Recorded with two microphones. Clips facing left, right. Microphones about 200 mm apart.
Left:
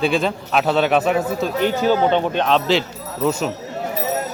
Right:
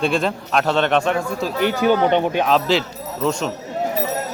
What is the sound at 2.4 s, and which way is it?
A man's voice, centre (ahead or behind).